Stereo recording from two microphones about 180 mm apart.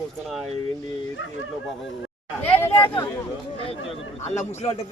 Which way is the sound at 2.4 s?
10° left (ahead or behind).